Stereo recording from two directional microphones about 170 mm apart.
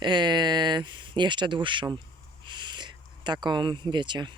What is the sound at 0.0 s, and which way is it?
Speech, 25° right (ahead or behind).